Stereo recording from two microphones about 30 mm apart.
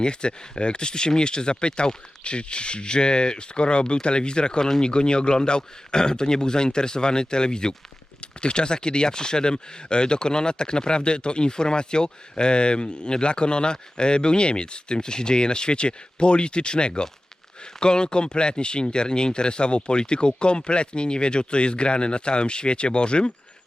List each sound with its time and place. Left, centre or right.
0.0 s a man's voice: left